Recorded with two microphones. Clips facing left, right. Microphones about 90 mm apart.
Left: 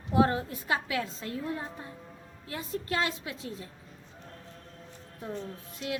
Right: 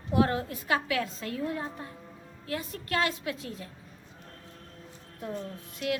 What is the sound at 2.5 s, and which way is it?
A woman's voice, 25° left (ahead or behind).